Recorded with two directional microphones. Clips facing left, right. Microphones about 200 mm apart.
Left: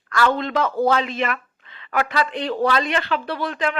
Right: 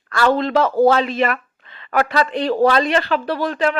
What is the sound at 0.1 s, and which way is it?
Speech, 35° right (ahead or behind).